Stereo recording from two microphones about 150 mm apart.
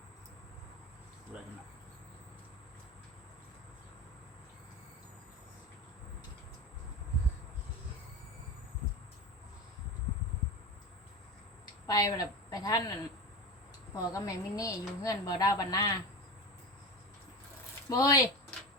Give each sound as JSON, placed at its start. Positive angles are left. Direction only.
{"t": 11.9, "sound": "a woman's voice", "side_deg": 25}
{"t": 13.9, "sound": "a woman's voice", "side_deg": 20}
{"t": 17.8, "sound": "a woman's voice", "side_deg": 25}